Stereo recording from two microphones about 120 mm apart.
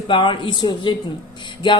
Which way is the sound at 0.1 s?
45° left (ahead or behind).